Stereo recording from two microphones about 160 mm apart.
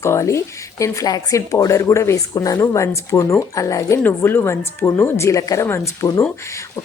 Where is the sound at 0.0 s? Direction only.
15° left (ahead or behind).